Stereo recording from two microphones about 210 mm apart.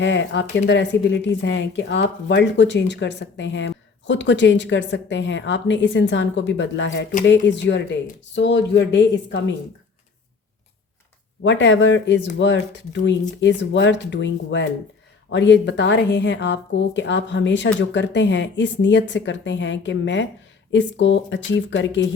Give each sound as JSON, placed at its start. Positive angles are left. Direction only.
{"t": 0.0, "sound": "speech", "side_deg": 60}
{"t": 11.4, "sound": "speech", "side_deg": 60}